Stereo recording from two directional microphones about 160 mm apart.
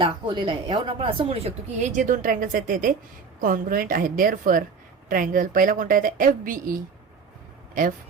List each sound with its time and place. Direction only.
0.0 s a woman's voice: 30° right (ahead or behind); by 6.7 s 60° right (ahead or behind)
7.8 s a woman's voice: 55° right (ahead or behind)